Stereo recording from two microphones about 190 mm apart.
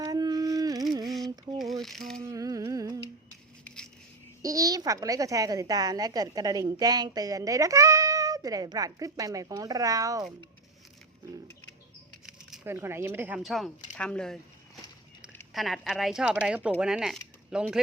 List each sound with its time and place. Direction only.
0.0 s a sound: 20° right (ahead or behind)
1.0 s a sound: centre (ahead or behind)
2.2 s music: 20° right (ahead or behind)
4.4 s a child's voice: 20° right (ahead or behind)
12.2 s speech: 10° right (ahead or behind)
15.5 s speech: centre (ahead or behind)